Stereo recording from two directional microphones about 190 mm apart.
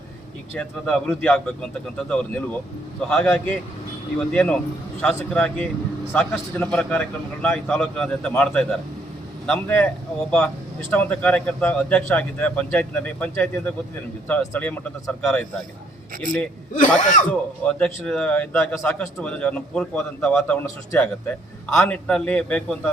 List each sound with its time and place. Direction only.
0.5 s a man's voice: 5° left (ahead or behind)
10.9 s a man's voice: 5° left (ahead or behind)
16.7 s speech: 40° left (ahead or behind)
17.6 s a man's voice: 5° left (ahead or behind)